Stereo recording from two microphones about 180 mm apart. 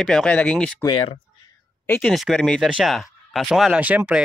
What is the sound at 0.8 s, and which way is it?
Speech, 25° left (ahead or behind).